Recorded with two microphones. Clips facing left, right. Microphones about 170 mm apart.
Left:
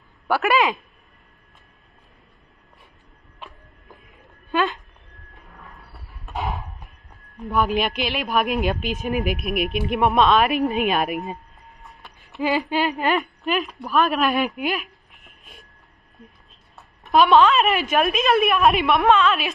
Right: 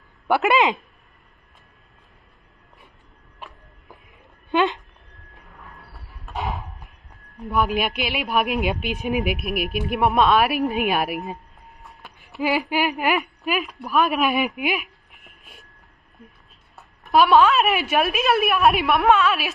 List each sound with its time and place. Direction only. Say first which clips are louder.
0.3 s speech: right 1 dB; 20° right (ahead or behind)
4.5 s a sound: right 2 dB; 20° right (ahead or behind)
7.5 s speech: left 1 dB; 5° right (ahead or behind)
17.1 s speech: even; 5° right (ahead or behind)